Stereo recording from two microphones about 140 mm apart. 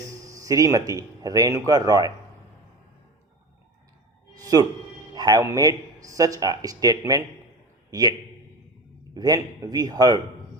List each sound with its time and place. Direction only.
0.1 s speech: 25° right (ahead or behind)
4.4 s music: 25° right (ahead or behind)
5.1 s a man's voice: 30° right (ahead or behind)
9.1 s speech: 25° right (ahead or behind)